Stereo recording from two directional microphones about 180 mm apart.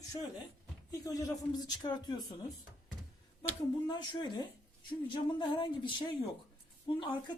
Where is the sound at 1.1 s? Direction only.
20° left (ahead or behind).